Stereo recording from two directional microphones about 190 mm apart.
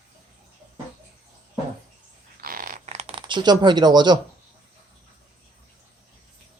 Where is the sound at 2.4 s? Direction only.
50° right (ahead or behind); by 4.2 s 20° right (ahead or behind).